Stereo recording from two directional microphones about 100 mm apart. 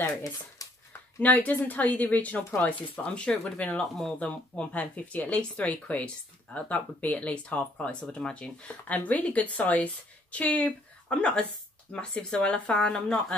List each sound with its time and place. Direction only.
0.0 s speech: 35° left (ahead or behind)
1.2 s speech: 15° left (ahead or behind)
4.2 s speech: 15° left (ahead or behind)